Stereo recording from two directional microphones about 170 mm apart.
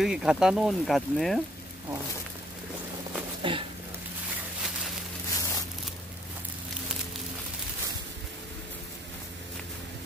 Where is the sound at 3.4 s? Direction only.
30° right (ahead or behind).